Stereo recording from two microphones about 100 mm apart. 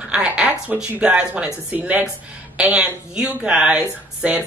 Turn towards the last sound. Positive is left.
turn(degrees=-15)  # may be behind; listen again after turning